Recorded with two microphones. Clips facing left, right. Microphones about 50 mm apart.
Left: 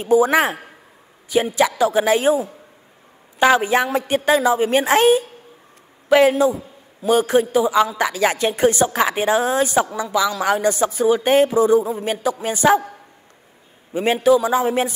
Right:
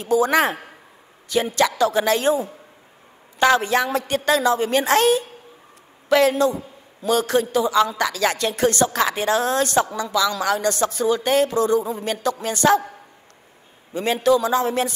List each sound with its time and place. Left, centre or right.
0.0 s a woman's voice: centre
3.3 s a woman's voice: centre
13.9 s a woman's voice: centre